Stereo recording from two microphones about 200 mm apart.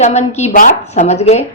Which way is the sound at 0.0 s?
35° left (ahead or behind).